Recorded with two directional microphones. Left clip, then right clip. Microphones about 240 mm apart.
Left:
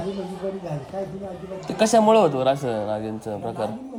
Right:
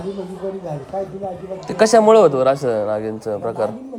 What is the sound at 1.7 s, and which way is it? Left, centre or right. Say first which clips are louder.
Speech: right 6 dB; centre.